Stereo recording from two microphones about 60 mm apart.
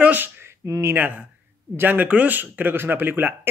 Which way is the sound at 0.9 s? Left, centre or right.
Right.